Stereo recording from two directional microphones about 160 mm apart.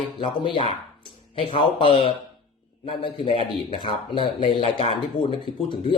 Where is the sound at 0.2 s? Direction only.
35° left (ahead or behind).